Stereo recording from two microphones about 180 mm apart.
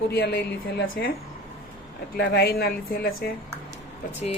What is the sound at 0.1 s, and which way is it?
A woman's voice, 70° left (ahead or behind).